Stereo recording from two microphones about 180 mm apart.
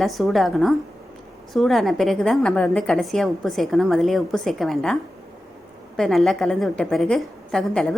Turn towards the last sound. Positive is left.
turn(degrees=5)  # may be behind; listen again after turning